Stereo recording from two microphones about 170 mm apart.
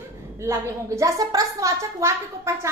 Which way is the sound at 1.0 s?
20° right (ahead or behind).